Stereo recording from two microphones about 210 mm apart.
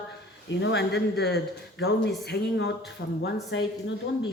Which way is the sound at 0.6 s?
55° left (ahead or behind).